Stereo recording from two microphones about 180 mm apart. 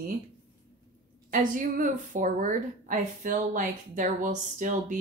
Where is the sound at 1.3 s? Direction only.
45° right (ahead or behind).